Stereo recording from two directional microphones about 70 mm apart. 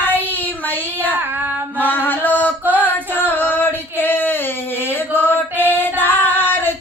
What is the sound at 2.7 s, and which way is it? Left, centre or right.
Female singing, left.